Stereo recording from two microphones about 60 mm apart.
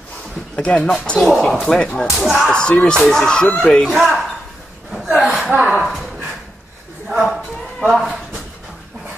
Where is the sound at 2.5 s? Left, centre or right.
Centre.